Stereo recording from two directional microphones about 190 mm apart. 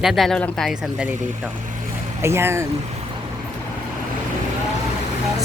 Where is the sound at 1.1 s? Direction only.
40° right (ahead or behind).